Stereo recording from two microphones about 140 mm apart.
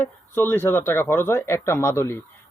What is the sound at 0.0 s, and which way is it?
Speech, 15° left (ahead or behind).